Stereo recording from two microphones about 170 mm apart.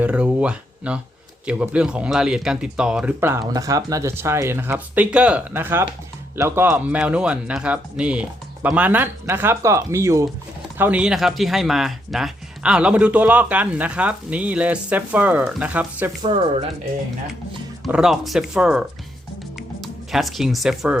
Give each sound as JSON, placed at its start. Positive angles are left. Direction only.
{"t": 0.0, "sound": "a sound", "side_deg": -10}
{"t": 1.5, "sound": "speech", "side_deg": -10}
{"t": 16.2, "sound": "speech", "side_deg": -30}
{"t": 17.8, "sound": "speech", "side_deg": 0}
{"t": 19.5, "sound": "music", "side_deg": 0}